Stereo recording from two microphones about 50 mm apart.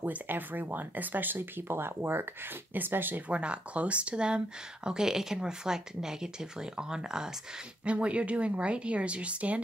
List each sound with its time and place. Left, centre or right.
0.0 s speech: right
3.3 s speech: right
7.8 s speech: right